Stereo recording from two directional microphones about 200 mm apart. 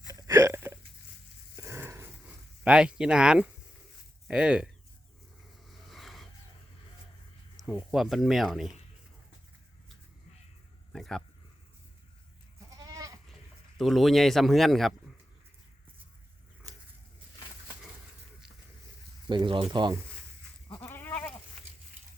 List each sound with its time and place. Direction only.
0.2 s hiccup: 15° right (ahead or behind)
1.5 s a sound: 10° right (ahead or behind)
2.6 s speech: 5° right (ahead or behind)
5.9 s a sound: centre (ahead or behind)
7.7 s speech: centre (ahead or behind)
10.9 s a sound: centre (ahead or behind)
12.7 s goat: 15° right (ahead or behind)
13.7 s speech: centre (ahead or behind)
16.7 s biting: 15° right (ahead or behind)
19.3 s speech: 25° right (ahead or behind)
20.7 s goat: 10° left (ahead or behind)